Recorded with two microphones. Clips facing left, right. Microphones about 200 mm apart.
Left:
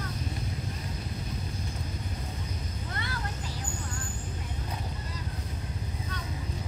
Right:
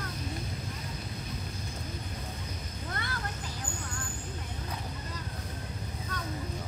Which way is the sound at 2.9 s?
50° right (ahead or behind).